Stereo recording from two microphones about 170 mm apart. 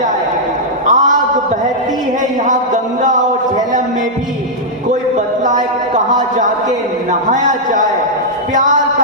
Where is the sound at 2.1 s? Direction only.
45° right (ahead or behind).